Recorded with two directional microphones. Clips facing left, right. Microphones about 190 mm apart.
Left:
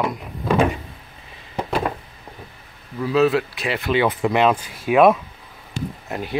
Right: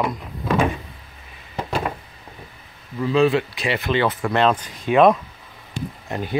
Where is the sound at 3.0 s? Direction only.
5° left (ahead or behind).